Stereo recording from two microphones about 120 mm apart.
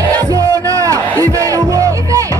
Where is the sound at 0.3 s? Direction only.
30° right (ahead or behind).